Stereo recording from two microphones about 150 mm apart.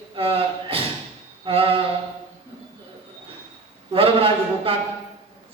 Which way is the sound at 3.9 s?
40° right (ahead or behind).